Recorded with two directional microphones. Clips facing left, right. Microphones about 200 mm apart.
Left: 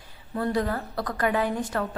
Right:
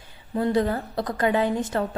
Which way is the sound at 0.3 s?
20° right (ahead or behind).